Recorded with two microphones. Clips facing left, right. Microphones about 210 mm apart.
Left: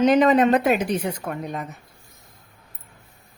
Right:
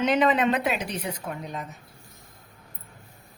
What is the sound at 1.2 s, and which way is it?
Speech, 60° left (ahead or behind).